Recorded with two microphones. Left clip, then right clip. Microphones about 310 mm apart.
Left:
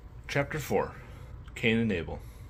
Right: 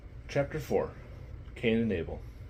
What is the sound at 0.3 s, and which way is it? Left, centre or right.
Speech, left.